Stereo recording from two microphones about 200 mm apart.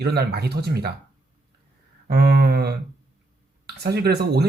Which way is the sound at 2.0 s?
55° right (ahead or behind).